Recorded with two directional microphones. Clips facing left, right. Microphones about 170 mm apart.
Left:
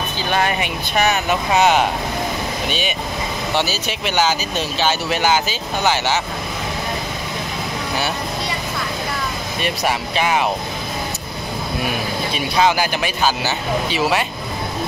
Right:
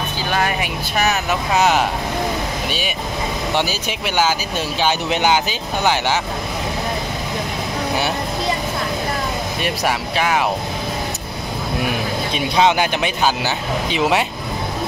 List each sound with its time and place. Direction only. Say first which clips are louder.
0.3 s speech: left 1 dB; centre (ahead or behind)
3.5 s speech: left 2 dB; 10° right (ahead or behind)
9.8 s speech: even; 10° left (ahead or behind)
12.4 s speech: right 1 dB; 20° right (ahead or behind)